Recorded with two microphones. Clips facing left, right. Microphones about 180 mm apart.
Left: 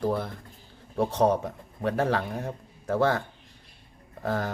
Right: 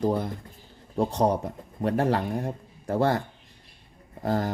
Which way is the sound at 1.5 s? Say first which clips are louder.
Right 2 dB; 15° right (ahead or behind).